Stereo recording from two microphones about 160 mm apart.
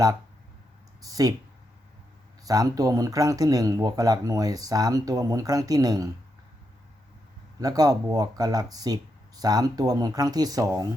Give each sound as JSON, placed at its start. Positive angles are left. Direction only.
{"t": 1.0, "sound": "speech", "side_deg": -20}
{"t": 2.4, "sound": "speech", "side_deg": -20}
{"t": 7.6, "sound": "speech", "side_deg": -25}